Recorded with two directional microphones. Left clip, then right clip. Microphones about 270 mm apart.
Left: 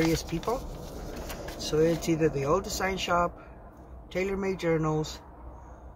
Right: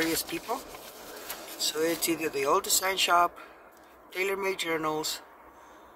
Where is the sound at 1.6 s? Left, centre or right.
Centre.